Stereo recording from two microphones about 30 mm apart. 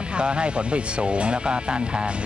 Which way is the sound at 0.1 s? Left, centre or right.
Right.